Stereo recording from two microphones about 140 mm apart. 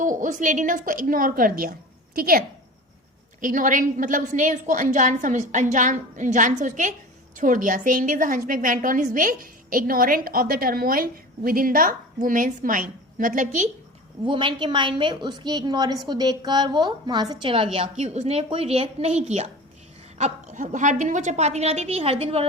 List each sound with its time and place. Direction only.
0.0 s a woman's voice: 65° right (ahead or behind); by 2.4 s 90° right
3.4 s a woman's voice: 70° right (ahead or behind)
14.3 s a woman's voice: 35° right (ahead or behind)
17.5 s a woman's voice: 40° right (ahead or behind)